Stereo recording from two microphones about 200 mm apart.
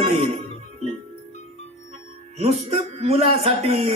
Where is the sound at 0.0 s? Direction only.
35° right (ahead or behind).